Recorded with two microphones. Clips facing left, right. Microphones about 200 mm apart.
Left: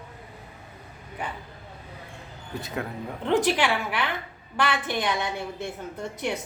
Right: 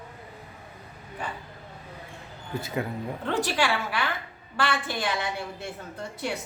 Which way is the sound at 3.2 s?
20° left (ahead or behind).